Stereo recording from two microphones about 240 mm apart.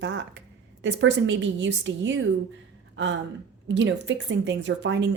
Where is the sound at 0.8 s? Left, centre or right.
Right.